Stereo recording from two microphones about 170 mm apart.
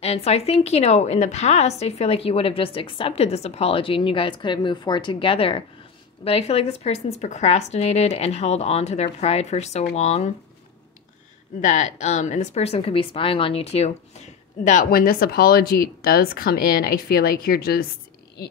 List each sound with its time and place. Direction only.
0.0 s a woman's voice: 40° left (ahead or behind)
11.6 s speech: 45° left (ahead or behind); by 17.8 s 65° left (ahead or behind)